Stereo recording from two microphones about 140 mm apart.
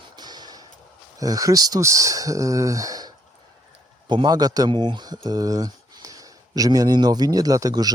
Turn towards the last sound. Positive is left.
turn(degrees=-25)  # may be behind; listen again after turning